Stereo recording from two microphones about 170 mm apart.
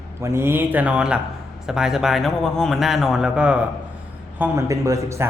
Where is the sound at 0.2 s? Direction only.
15° right (ahead or behind).